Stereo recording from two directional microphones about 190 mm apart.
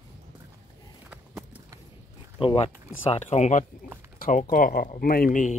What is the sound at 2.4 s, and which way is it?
Speech, 30° left (ahead or behind).